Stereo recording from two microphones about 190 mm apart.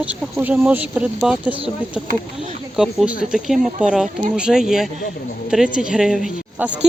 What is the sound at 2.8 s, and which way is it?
Speech, 5° right (ahead or behind).